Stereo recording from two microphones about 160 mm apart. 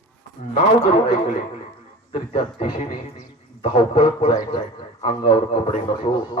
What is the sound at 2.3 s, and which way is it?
A man's voice, 35° left (ahead or behind).